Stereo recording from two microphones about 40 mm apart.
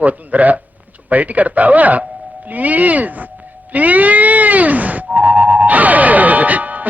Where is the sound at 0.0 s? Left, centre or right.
Right.